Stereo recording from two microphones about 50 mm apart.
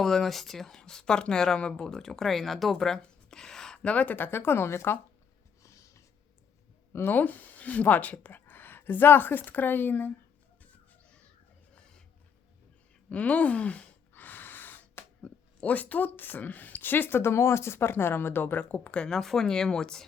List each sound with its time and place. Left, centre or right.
0.0 s speech: centre
3.8 s speech: left
5.6 s snort: left
7.1 s speech: left
13.1 s speech: left
14.1 s gasp: left
15.2 s speech: left
18.7 s speech: left